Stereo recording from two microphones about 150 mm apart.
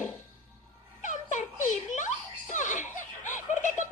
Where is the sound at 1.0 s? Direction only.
55° left (ahead or behind).